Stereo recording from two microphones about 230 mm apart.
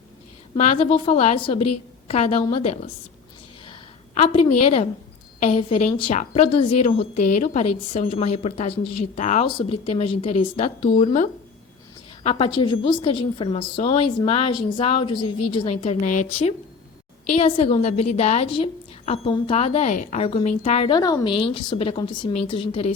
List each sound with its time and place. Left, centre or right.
0.5 s a woman's voice: left
3.7 s a sound: left
4.6 s a woman's voice: left